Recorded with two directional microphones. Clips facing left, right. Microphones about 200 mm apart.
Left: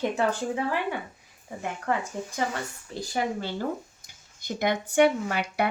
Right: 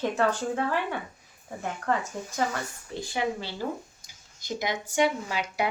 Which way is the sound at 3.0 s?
45° left (ahead or behind).